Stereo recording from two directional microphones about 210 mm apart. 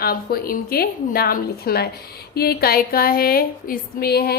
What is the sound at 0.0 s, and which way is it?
A woman's voice, 45° left (ahead or behind).